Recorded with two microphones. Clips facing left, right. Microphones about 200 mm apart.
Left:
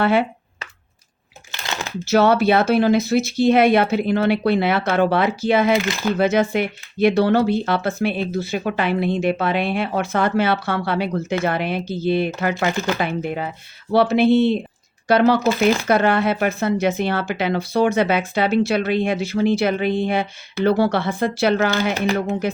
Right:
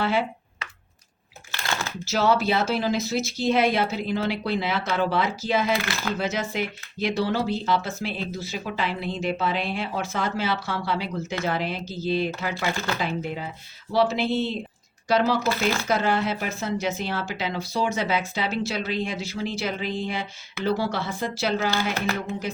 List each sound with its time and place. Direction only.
0.0 s speech: 60° left (ahead or behind)
1.5 s a sound: 20° left (ahead or behind)
2.0 s speech: 60° left (ahead or behind)
5.7 s speech: 20° left (ahead or behind)
6.1 s speech: 60° left (ahead or behind)